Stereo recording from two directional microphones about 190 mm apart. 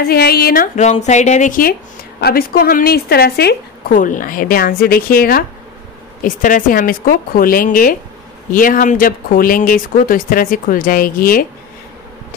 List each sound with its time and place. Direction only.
0.0 s a woman's voice: 55° left (ahead or behind)
0.7 s a woman's voice: 35° left (ahead or behind)